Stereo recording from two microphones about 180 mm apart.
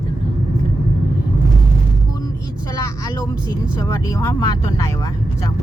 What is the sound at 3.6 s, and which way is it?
Speech, 15° left (ahead or behind).